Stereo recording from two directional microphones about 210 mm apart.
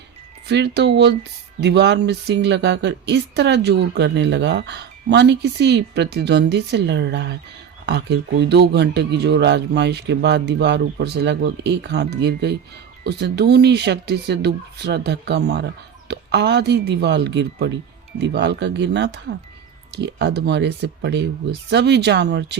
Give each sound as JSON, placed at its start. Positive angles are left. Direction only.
{"t": 0.4, "sound": "speech", "side_deg": -55}